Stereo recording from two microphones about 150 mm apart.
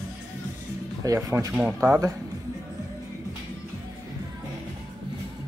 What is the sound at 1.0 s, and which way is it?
Speech, 20° right (ahead or behind).